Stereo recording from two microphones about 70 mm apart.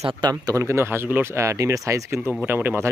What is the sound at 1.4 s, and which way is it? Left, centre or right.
Speech, right.